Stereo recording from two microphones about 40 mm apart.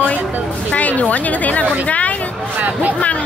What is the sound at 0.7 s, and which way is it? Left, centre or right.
Speech, left.